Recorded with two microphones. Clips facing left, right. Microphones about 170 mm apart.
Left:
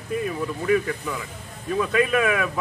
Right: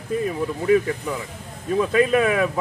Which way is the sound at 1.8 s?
35° right (ahead or behind).